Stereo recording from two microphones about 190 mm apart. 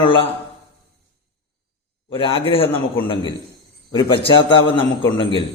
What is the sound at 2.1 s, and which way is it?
A man's voice, 30° left (ahead or behind).